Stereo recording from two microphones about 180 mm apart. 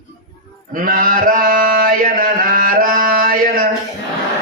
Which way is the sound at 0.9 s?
50° right (ahead or behind).